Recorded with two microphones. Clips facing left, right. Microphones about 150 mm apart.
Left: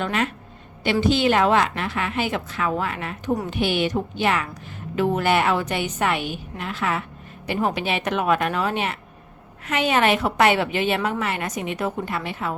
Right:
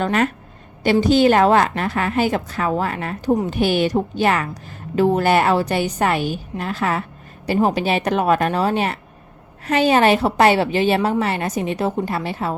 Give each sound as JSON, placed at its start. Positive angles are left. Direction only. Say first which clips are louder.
{"t": 0.0, "sound": "a woman's voice", "louder": "right 5 dB", "side_deg": -45}